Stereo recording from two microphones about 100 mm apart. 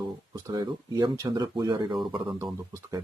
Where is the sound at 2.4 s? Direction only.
30° right (ahead or behind).